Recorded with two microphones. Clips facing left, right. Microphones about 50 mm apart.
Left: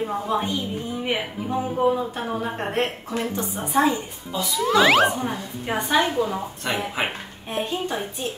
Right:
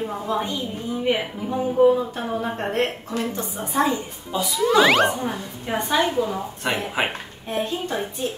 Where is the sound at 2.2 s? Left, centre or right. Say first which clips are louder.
Right 1 dB; centre.